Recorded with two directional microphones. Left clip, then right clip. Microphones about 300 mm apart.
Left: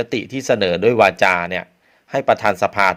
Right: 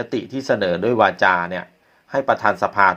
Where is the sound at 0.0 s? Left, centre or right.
Left.